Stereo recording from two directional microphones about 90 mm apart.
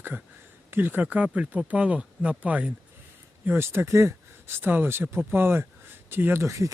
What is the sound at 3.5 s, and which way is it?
Speech, 25° right (ahead or behind).